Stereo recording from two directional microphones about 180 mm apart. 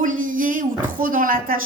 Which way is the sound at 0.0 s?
50° right (ahead or behind).